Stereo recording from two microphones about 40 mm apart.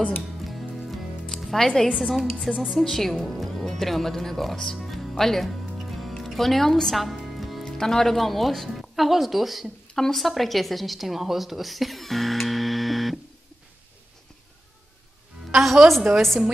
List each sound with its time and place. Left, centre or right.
0.2 s music: centre
1.5 s a woman's voice: centre
5.8 s music: centre
7.6 s a woman's voice: centre
15.5 s music: centre
16.1 s a woman's voice: centre